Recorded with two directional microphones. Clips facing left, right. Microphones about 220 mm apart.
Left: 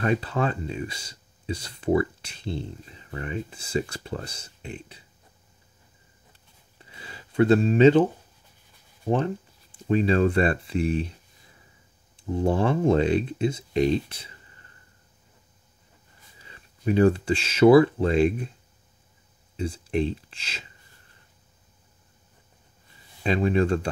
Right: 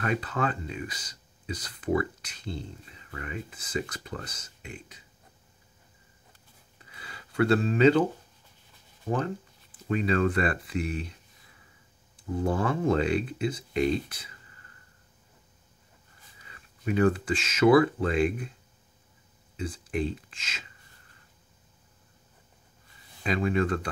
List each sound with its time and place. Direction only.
0.0 s speech: 25° left (ahead or behind)
6.9 s a sound: 25° left (ahead or behind)
9.1 s speech: 25° left (ahead or behind)
16.4 s speech: 30° left (ahead or behind)
19.5 s speech: 25° left (ahead or behind)
23.2 s speech: 30° left (ahead or behind)